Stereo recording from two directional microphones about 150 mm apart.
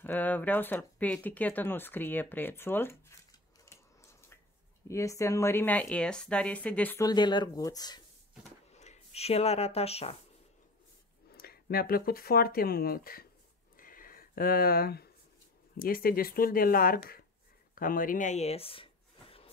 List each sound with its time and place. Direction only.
0.0 s a sound: 10° left (ahead or behind)
4.8 s a woman's voice: 20° left (ahead or behind)
7.0 s speech: 25° left (ahead or behind)
8.7 s speech: 50° left (ahead or behind)
11.3 s speech: 90° left
13.7 s a sound: 70° left (ahead or behind); by 15.0 s 90° left
15.8 s speech: 80° left
17.7 s speech: 65° left (ahead or behind); by 18.9 s 40° left (ahead or behind)